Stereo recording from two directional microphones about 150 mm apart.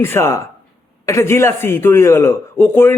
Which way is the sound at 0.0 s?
15° left (ahead or behind).